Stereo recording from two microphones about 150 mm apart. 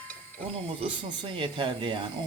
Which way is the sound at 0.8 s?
35° right (ahead or behind).